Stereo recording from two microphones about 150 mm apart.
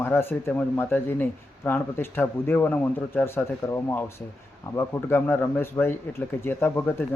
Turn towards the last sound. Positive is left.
turn(degrees=15)  # may be behind; listen again after turning